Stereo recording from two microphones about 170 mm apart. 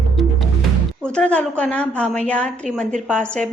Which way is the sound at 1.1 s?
5° left (ahead or behind).